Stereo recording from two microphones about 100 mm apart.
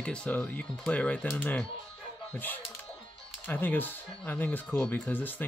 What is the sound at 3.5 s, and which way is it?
Speech, 20° left (ahead or behind).